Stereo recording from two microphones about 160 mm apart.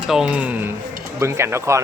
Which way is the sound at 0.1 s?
5° right (ahead or behind).